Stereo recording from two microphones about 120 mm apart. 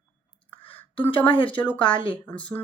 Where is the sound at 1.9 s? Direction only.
40° left (ahead or behind).